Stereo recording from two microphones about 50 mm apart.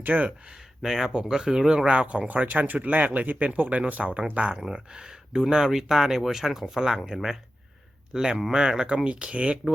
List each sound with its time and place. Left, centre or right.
0.0 s speech: right
0.8 s speech: centre
8.1 s speech: centre